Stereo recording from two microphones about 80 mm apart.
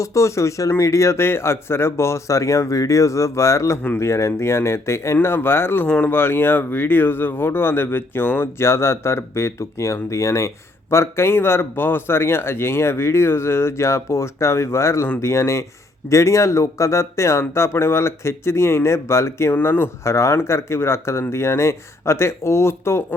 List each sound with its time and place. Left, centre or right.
0.0 s speech: left